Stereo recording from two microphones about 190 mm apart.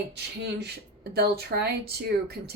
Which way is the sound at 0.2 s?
60° right (ahead or behind).